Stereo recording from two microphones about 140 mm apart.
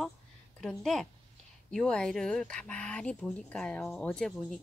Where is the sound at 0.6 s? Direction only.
Centre (ahead or behind).